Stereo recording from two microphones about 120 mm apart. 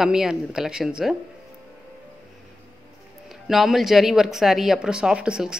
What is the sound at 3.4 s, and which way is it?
Speech, centre (ahead or behind).